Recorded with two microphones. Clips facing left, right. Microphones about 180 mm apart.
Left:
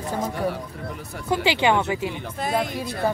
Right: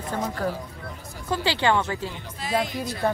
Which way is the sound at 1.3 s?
15° left (ahead or behind).